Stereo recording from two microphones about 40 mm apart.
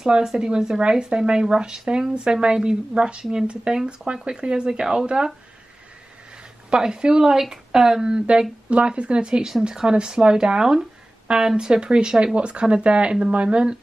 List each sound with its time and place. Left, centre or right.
0.0 s speech: centre
6.7 s speech: right